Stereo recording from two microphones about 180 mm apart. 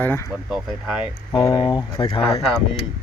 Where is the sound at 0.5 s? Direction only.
5° right (ahead or behind).